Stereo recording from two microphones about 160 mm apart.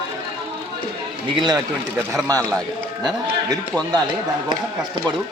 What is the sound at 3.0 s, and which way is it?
Speech, 25° right (ahead or behind).